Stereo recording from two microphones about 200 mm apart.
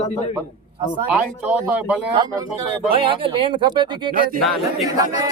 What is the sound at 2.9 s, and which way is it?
Speech, 25° right (ahead or behind).